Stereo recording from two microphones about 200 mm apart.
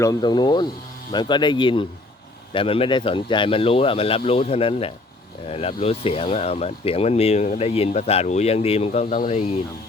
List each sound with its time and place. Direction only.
0.0 s speech: 20° left (ahead or behind); by 9.5 s 35° left (ahead or behind)